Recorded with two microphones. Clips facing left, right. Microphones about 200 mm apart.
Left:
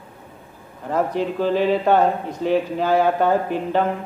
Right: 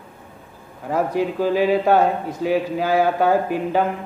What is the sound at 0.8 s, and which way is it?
A man's voice, 10° right (ahead or behind).